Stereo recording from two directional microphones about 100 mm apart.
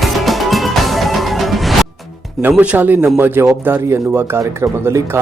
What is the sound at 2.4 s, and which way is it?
Speech, 20° right (ahead or behind).